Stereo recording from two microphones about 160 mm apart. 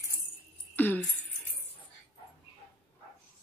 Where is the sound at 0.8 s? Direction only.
10° left (ahead or behind).